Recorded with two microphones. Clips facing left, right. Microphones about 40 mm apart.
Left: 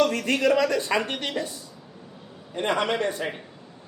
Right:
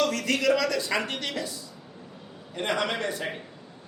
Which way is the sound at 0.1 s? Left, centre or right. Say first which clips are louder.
Left 2 dB; left.